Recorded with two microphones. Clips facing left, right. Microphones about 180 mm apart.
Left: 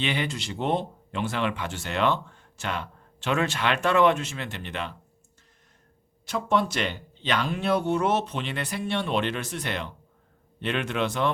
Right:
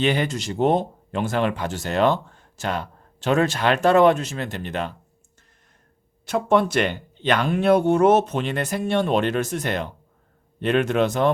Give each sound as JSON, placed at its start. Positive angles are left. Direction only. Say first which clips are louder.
{"t": 0.0, "sound": "speech", "louder": "right 7 dB", "side_deg": -45}
{"t": 6.2, "sound": "speech", "louder": "right 6 dB", "side_deg": -55}